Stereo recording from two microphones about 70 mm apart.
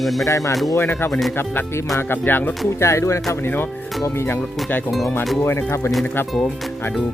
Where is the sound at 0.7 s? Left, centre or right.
Left.